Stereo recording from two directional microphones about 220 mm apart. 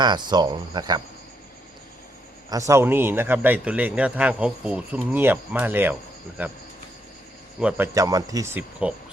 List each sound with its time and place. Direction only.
0.0 s speech: 20° right (ahead or behind)
2.5 s a man's voice: 15° right (ahead or behind)
7.6 s speech: 5° right (ahead or behind)
7.9 s a man's voice: 15° right (ahead or behind)